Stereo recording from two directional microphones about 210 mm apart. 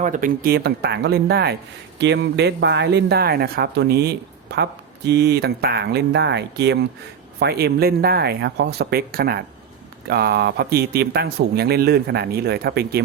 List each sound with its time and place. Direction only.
0.0 s speech: 40° right (ahead or behind)